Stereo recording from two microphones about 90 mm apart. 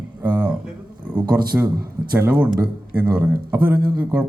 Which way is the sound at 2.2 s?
20° right (ahead or behind).